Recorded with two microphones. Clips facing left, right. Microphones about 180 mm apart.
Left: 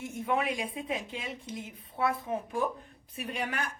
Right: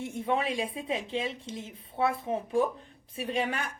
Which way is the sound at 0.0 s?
30° right (ahead or behind).